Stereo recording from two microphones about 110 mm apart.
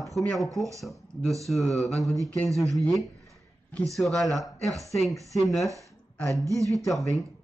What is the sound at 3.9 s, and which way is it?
Mantra, centre (ahead or behind).